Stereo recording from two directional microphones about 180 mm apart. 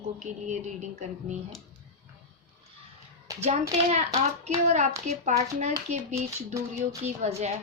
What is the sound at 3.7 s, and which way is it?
A woman's voice, 40° right (ahead or behind).